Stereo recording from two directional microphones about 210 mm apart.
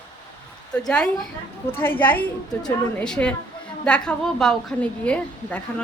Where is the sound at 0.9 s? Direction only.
5° left (ahead or behind).